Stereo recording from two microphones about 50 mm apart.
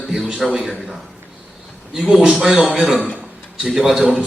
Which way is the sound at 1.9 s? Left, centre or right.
Centre.